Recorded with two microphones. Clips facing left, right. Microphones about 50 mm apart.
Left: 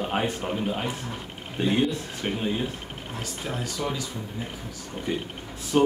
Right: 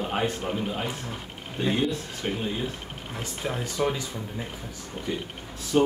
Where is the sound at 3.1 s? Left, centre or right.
Right.